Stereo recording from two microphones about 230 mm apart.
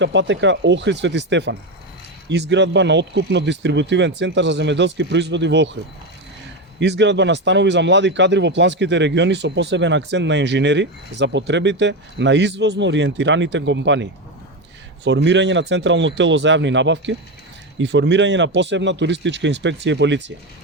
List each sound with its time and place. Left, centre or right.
0.0 s speech: right
6.7 s speech: right